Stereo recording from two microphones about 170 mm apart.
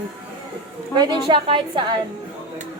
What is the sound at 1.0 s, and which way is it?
Speech, 25° right (ahead or behind).